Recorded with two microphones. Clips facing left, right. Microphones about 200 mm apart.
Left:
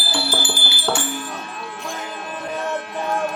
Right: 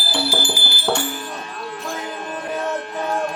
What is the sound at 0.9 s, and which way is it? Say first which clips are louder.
Music: right 2 dB; centre (ahead or behind).